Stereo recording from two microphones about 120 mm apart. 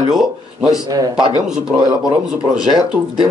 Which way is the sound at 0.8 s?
30° right (ahead or behind).